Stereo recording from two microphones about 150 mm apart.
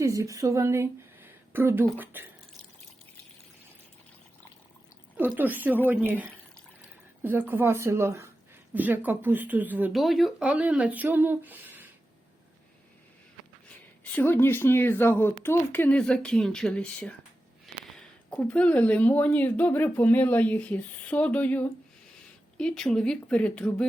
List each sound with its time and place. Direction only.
0.0 s a woman's voice: 20° right (ahead or behind)
5.1 s speech: 10° right (ahead or behind)
7.2 s speech: 15° right (ahead or behind)
9.9 s speech: centre (ahead or behind)
13.7 s speech: 10° left (ahead or behind)
17.7 s a sound: centre (ahead or behind)
18.3 s speech: 10° left (ahead or behind)